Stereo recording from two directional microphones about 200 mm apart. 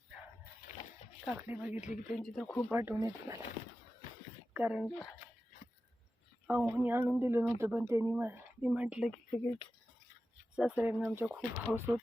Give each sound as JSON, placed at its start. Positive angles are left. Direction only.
{"t": 1.2, "sound": "speech", "side_deg": -5}
{"t": 2.6, "sound": "speech", "side_deg": -10}
{"t": 4.5, "sound": "speech", "side_deg": -5}
{"t": 6.5, "sound": "speech", "side_deg": -5}
{"t": 10.5, "sound": "speech", "side_deg": -5}